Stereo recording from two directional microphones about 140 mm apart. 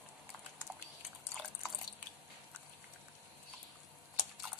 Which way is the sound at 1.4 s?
Centre (ahead or behind).